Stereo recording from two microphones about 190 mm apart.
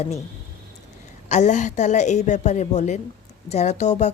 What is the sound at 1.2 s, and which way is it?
A woman's voice, 40° left (ahead or behind).